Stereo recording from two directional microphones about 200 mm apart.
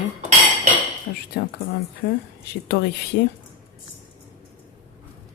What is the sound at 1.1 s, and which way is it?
Speech, 50° left (ahead or behind).